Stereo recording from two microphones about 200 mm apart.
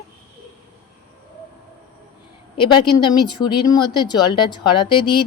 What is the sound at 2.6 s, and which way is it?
Speech, 25° left (ahead or behind).